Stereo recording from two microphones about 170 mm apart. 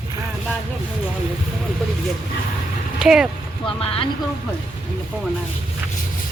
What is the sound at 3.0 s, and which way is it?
Speech, 5° right (ahead or behind).